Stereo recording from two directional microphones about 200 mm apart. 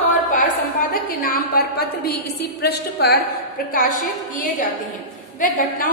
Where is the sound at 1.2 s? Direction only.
45° left (ahead or behind).